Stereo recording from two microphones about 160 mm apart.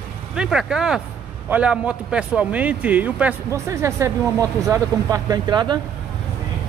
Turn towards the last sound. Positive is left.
turn(degrees=-25)  # may be behind; listen again after turning